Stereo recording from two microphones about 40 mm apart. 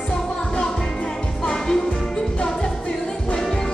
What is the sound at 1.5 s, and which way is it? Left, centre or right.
Music, centre.